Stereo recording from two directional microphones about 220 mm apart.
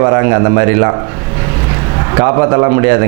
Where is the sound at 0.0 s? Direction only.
20° right (ahead or behind).